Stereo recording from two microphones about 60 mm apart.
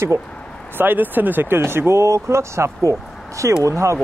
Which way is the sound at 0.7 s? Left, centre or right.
Right.